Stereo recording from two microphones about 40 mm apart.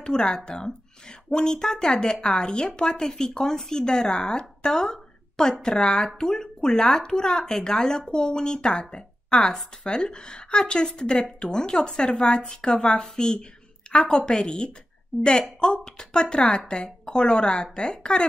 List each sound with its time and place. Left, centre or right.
0.0 s a woman's voice: left
15.1 s a woman's voice: centre
15.7 s speech: left